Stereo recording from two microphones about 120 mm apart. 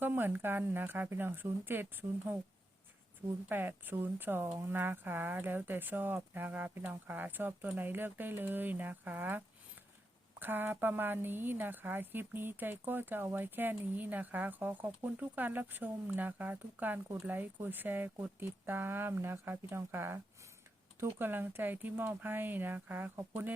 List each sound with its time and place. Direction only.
0.0 s a woman's voice: 20° right (ahead or behind)
3.5 s a woman's voice: 15° right (ahead or behind)
10.4 s a woman's voice: 15° right (ahead or behind)